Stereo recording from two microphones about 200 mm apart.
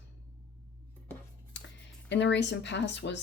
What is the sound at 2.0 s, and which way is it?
Speech, 60° left (ahead or behind).